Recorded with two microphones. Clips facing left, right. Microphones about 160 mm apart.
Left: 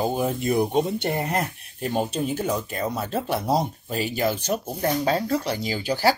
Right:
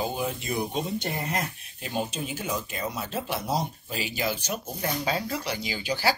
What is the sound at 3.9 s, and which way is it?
Speech, 50° left (ahead or behind).